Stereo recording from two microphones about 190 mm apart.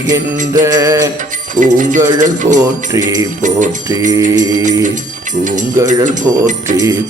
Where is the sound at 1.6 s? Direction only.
40° right (ahead or behind).